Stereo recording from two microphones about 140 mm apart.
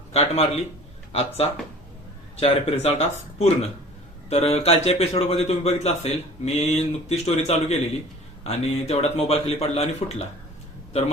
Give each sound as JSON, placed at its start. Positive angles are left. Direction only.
{"t": 0.1, "sound": "speech", "side_deg": 45}